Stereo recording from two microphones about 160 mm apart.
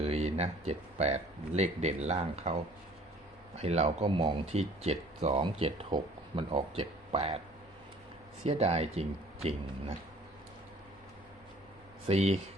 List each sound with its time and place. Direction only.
0.0 s speech: 40° right (ahead or behind)
3.6 s speech: 40° right (ahead or behind)
8.4 s speech: 40° right (ahead or behind)
12.0 s speech: 40° right (ahead or behind)